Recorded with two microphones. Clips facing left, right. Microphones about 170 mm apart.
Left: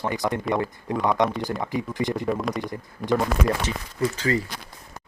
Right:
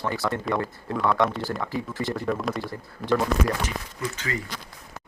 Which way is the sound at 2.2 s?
Centre (ahead or behind).